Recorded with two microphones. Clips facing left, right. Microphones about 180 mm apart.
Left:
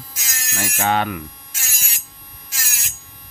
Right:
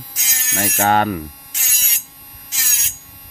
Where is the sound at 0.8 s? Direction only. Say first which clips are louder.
Right 4 dB; 45° right (ahead or behind).